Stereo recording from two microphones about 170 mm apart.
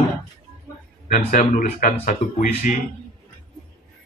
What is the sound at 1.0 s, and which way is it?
A man's voice, 45° left (ahead or behind).